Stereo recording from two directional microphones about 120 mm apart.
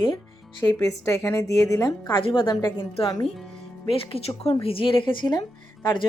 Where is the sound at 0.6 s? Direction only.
30° left (ahead or behind).